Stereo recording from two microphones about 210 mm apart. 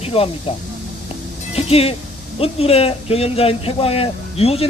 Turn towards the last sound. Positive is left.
turn(degrees=30)  # may be behind; listen again after turning